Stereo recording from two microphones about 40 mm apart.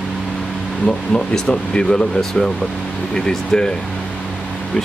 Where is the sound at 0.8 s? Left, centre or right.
Left.